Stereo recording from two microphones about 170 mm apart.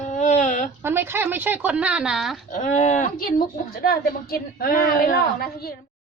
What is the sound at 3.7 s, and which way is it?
A woman's voice, 60° left (ahead or behind).